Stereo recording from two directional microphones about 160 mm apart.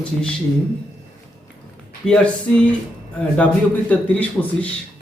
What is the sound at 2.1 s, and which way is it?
Speech, 5° left (ahead or behind).